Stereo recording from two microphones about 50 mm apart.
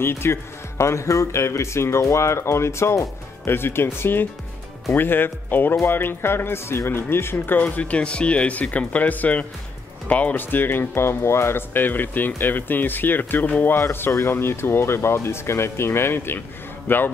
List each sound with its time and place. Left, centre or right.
0.0 s speech: left
3.4 s speech: left
7.6 s speech: left
10.3 s speech: left
16.3 s a man's voice: left